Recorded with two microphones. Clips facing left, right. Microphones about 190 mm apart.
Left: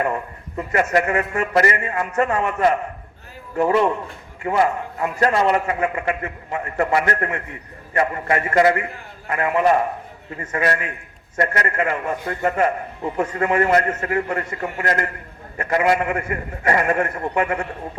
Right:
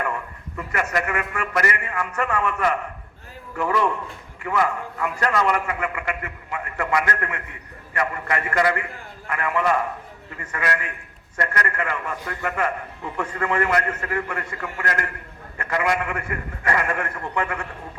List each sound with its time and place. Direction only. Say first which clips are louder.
0.0 s a man's voice: left 5 dB; 25° left (ahead or behind)